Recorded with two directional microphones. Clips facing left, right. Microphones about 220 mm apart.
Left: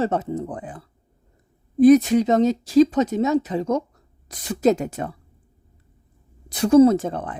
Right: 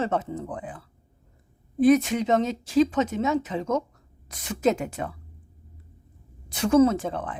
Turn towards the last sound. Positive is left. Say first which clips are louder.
# left 6 dB
turn(degrees=40)  # may be behind; listen again after turning